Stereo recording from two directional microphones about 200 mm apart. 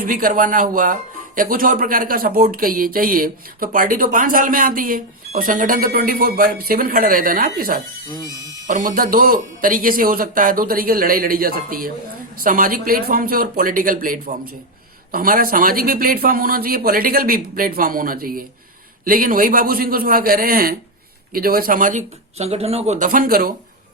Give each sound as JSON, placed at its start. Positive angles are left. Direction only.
{"t": 0.1, "sound": "speech", "side_deg": -45}